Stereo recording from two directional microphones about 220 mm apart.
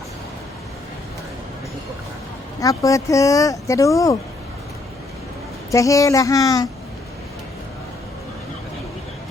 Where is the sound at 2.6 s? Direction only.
15° left (ahead or behind).